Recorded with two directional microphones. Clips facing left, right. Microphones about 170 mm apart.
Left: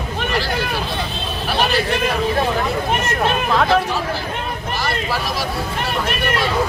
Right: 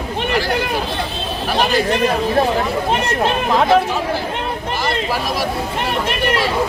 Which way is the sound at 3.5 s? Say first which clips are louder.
Right 3 dB; 20° right (ahead or behind).